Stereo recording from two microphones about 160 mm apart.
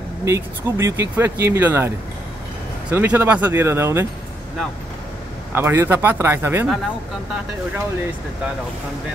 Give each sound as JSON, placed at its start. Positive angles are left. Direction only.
{"t": 0.2, "sound": "speech", "side_deg": -20}
{"t": 2.9, "sound": "speech", "side_deg": -10}
{"t": 5.5, "sound": "speech", "side_deg": -15}